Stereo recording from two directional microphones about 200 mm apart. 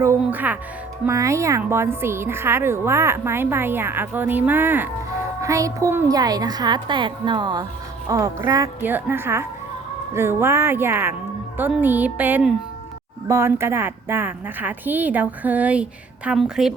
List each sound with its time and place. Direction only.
0.0 s a woman's voice: 10° right (ahead or behind)